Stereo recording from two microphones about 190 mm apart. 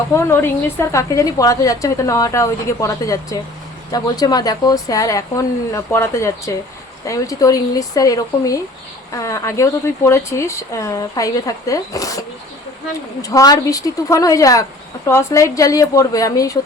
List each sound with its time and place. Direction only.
0.1 s a woman's voice: 15° left (ahead or behind)
13.2 s a woman's voice: 20° left (ahead or behind)